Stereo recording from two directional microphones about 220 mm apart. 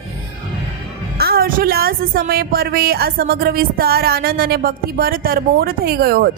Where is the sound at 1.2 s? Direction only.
45° right (ahead or behind).